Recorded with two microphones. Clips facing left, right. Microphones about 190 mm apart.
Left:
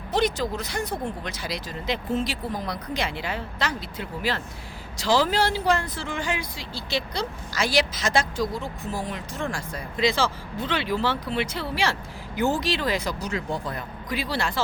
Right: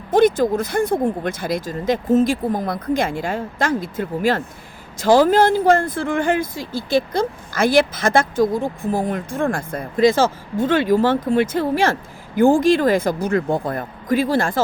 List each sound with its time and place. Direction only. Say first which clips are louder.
0.1 s speech: right 10 dB; 50° right (ahead or behind)